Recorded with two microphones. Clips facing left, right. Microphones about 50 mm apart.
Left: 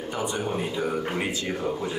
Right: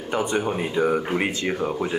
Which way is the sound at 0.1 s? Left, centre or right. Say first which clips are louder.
Right 7 dB; right.